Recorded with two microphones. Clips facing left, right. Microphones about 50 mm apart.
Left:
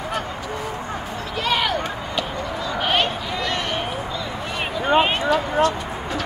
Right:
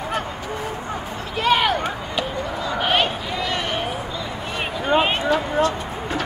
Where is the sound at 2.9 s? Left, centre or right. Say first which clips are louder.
Even; centre.